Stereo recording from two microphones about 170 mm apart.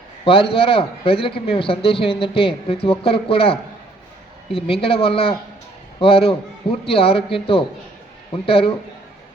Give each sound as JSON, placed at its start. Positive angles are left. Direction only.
{"t": 0.3, "sound": "speech", "side_deg": 30}